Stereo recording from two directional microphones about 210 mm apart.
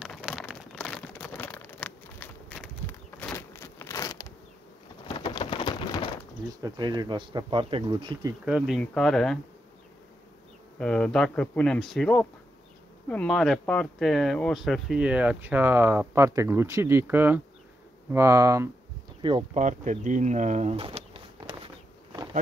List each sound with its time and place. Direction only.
0.0 s a sound: centre (ahead or behind); by 4.3 s 15° left (ahead or behind)
5.0 s rain: 25° left (ahead or behind)
6.6 s speech: 20° right (ahead or behind)
8.5 s speech: 5° right (ahead or behind)
10.8 s speech: 5° left (ahead or behind); by 19.6 s 25° right (ahead or behind)
19.6 s speech: 35° right (ahead or behind)